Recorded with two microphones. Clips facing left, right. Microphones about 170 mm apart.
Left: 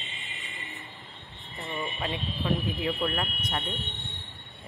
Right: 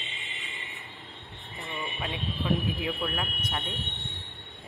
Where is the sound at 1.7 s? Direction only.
45° left (ahead or behind).